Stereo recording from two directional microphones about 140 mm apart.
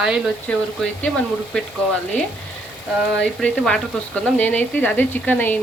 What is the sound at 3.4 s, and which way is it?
Speech, 5° left (ahead or behind).